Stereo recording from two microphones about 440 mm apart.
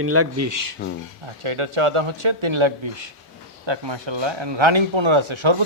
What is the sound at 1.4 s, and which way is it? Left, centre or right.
Speech, right.